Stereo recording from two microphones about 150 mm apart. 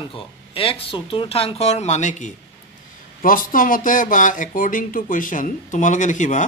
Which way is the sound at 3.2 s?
65° left (ahead or behind).